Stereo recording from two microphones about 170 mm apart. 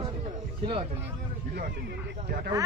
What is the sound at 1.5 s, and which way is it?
Speech, 65° right (ahead or behind).